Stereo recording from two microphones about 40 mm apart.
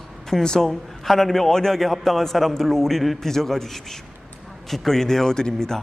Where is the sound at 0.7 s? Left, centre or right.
Centre.